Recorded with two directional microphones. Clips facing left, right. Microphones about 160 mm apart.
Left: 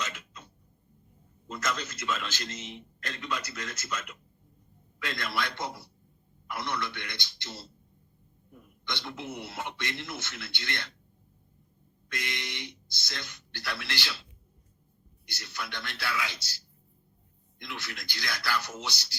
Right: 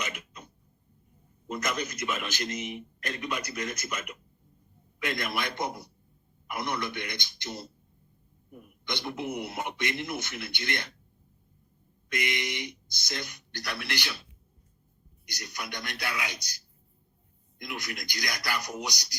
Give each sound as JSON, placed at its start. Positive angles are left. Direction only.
{"t": 0.0, "sound": "a sound", "side_deg": -15}
{"t": 1.5, "sound": "a man's voice", "side_deg": -20}
{"t": 8.9, "sound": "a man's voice", "side_deg": -20}
{"t": 12.0, "sound": "a man's voice", "side_deg": -15}
{"t": 15.3, "sound": "a man's voice", "side_deg": -15}
{"t": 17.6, "sound": "a man's voice", "side_deg": -15}